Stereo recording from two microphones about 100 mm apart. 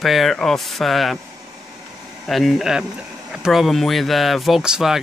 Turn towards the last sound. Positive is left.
turn(degrees=-5)  # may be behind; listen again after turning